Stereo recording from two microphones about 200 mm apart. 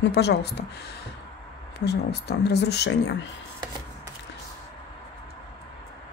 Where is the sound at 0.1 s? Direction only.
55° left (ahead or behind).